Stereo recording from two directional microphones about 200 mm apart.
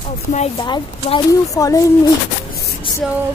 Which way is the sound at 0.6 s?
20° left (ahead or behind).